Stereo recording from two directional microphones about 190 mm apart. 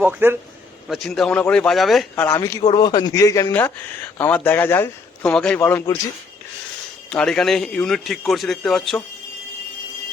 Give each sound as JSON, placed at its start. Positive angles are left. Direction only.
{"t": 0.0, "sound": "a man's voice", "side_deg": -10}
{"t": 0.9, "sound": "a man's voice", "side_deg": 0}
{"t": 7.1, "sound": "a man's voice", "side_deg": 5}